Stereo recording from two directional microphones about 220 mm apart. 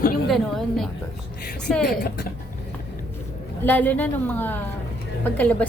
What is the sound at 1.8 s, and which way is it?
Speech, 45° left (ahead or behind).